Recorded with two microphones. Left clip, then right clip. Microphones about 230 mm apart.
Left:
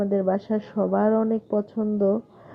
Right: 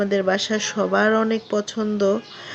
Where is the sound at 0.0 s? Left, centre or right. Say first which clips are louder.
Right 3 dB; right.